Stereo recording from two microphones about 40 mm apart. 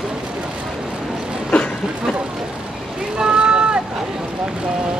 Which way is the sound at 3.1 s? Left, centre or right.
Right.